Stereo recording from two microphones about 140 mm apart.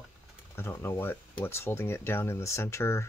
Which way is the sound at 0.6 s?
15° left (ahead or behind).